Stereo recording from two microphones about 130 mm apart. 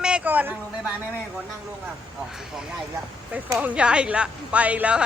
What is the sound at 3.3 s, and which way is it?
A woman's voice, 10° right (ahead or behind).